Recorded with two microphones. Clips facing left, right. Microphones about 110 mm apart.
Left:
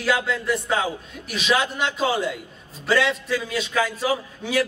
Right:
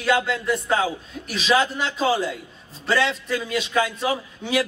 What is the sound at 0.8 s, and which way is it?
A man's voice, 30° right (ahead or behind).